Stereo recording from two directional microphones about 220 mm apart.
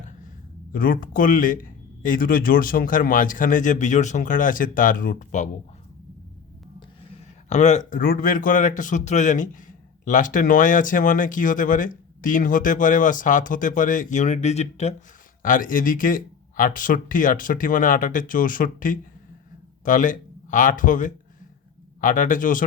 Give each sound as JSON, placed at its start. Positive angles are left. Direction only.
{"t": 0.7, "sound": "speech", "side_deg": 40}
{"t": 7.1, "sound": "speech", "side_deg": 30}